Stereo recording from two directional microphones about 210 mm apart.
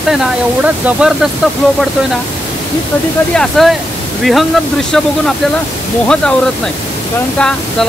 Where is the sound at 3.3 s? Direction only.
Centre (ahead or behind).